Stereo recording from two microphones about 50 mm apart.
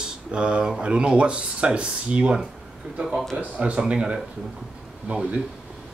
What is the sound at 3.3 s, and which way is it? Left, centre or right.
Speech, right.